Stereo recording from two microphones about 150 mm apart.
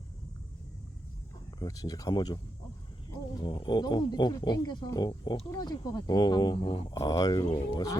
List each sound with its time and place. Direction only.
1.5 s speech: 25° left (ahead or behind)